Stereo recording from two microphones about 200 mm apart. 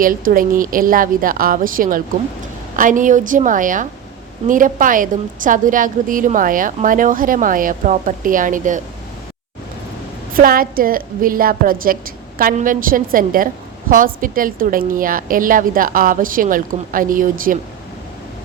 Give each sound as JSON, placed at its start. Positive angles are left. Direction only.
{"t": 0.0, "sound": "a woman's voice", "side_deg": -45}
{"t": 10.3, "sound": "a woman's voice", "side_deg": -45}